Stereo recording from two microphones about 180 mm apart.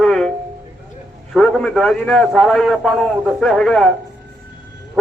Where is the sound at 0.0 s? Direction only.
Centre (ahead or behind).